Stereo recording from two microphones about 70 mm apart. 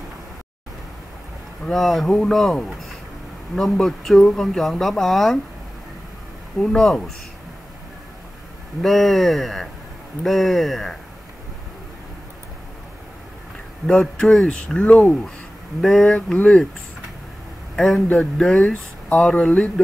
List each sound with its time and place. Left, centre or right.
1.7 s speech: centre
6.6 s speech: centre
8.8 s speech: centre
13.8 s speech: centre
17.7 s a man's voice: centre
18.0 s speech: left